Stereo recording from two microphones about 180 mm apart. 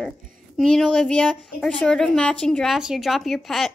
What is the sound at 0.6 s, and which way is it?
Speech, centre (ahead or behind).